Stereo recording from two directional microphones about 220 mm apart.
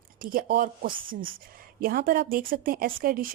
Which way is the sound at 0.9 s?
25° right (ahead or behind).